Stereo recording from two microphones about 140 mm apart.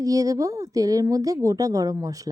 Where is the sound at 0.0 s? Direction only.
25° right (ahead or behind).